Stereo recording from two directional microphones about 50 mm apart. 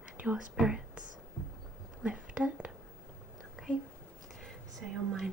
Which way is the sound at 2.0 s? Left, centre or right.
Right.